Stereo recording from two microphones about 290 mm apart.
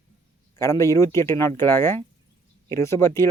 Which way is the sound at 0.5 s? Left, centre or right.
Centre.